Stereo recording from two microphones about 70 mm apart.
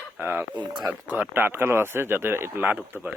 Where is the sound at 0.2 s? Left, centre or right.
Right.